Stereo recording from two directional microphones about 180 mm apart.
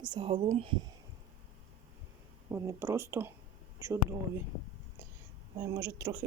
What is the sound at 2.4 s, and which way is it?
Speech, 15° right (ahead or behind).